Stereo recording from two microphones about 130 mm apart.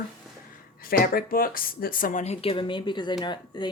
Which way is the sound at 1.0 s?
90° left.